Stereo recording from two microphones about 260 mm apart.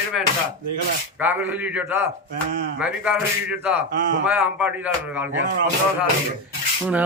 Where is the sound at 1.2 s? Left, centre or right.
Centre.